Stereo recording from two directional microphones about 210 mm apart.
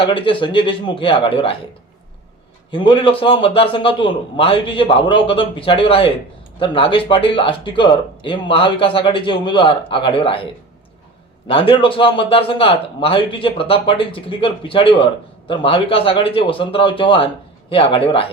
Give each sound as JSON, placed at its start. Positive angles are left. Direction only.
{"t": 0.0, "sound": "a man's voice", "side_deg": 25}
{"t": 2.7, "sound": "a man's voice", "side_deg": 25}